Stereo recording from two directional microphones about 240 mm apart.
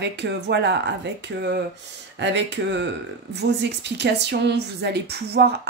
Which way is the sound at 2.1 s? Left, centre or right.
Right.